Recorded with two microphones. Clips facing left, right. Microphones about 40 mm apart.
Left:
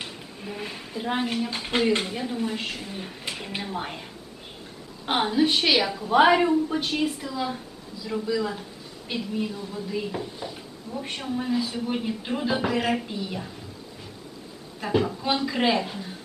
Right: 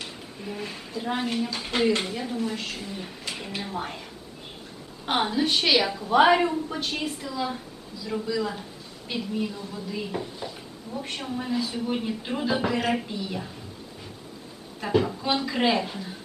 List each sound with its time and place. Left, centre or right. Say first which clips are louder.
0.6 s a woman's voice: left 2 dB; centre
2.3 s a woman's voice: left 1 dB; centre
5.0 s speech: left 2 dB; centre
14.8 s speech: even; centre